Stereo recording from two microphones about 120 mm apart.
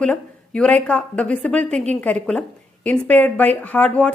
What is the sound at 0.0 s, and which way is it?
Speech, 10° left (ahead or behind).